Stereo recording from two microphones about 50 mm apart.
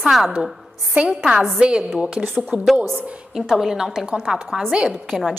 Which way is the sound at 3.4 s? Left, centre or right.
Centre.